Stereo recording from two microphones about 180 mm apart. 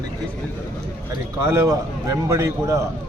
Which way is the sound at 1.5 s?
15° right (ahead or behind).